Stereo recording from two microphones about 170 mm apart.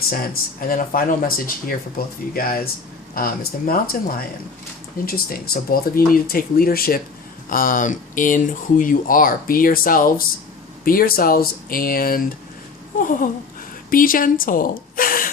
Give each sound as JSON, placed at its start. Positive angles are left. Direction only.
{"t": 0.7, "sound": "speech", "side_deg": 55}
{"t": 13.0, "sound": "a sound", "side_deg": 50}
{"t": 13.9, "sound": "a woman's voice", "side_deg": 55}